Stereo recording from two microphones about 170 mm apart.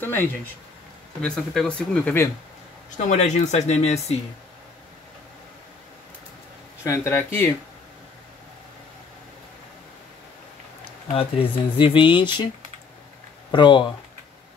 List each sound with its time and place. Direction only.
1.2 s speech: 5° left (ahead or behind)
3.0 s speech: 45° left (ahead or behind)
6.8 s speech: 15° left (ahead or behind)
11.1 s speech: 35° left (ahead or behind)
13.5 s speech: 25° left (ahead or behind)